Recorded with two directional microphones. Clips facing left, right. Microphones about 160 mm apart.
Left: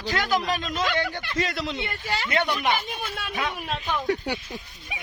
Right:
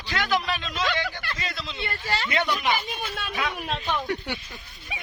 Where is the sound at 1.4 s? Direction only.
75° left (ahead or behind).